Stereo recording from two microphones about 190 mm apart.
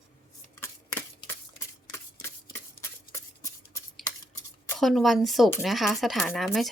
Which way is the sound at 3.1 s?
15° left (ahead or behind).